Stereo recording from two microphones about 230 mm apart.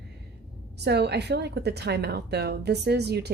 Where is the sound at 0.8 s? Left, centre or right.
Right.